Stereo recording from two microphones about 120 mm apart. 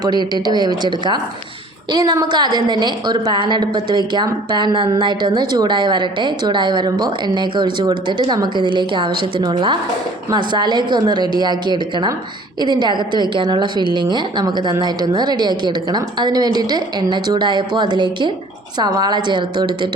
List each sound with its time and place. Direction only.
0.3 s a woman's voice: 35° right (ahead or behind)